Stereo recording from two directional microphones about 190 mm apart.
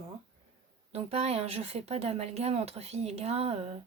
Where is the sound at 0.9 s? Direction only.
35° right (ahead or behind).